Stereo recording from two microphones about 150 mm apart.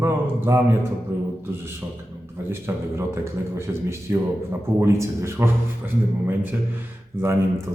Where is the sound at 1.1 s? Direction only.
20° right (ahead or behind).